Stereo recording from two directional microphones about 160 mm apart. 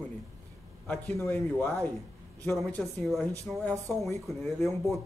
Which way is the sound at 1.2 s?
15° left (ahead or behind).